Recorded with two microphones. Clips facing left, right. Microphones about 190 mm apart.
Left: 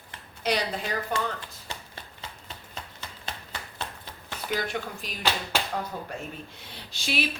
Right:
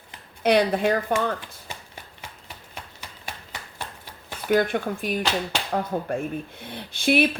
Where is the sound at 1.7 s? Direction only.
10° right (ahead or behind).